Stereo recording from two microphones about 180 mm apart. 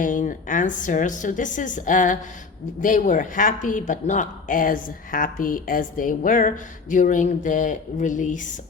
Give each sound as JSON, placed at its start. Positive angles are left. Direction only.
{"t": 0.0, "sound": "speech", "side_deg": 45}